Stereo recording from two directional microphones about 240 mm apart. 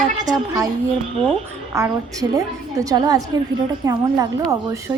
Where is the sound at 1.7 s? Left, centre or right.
Centre.